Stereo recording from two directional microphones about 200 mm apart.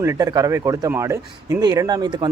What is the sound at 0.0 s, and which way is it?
A man's voice, 15° right (ahead or behind).